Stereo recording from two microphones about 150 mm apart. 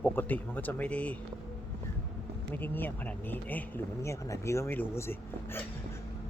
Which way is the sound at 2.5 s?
10° left (ahead or behind).